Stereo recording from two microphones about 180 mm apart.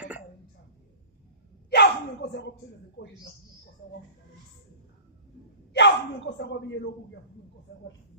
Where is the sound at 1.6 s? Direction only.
70° left (ahead or behind).